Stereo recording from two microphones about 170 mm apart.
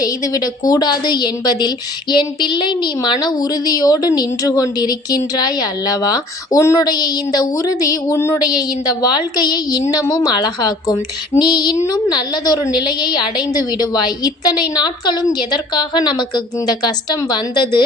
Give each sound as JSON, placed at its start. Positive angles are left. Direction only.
{"t": 0.0, "sound": "a woman's voice", "side_deg": 20}